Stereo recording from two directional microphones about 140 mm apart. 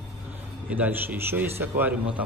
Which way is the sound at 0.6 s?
10° right (ahead or behind).